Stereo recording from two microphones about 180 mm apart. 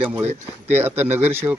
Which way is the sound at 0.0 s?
10° right (ahead or behind).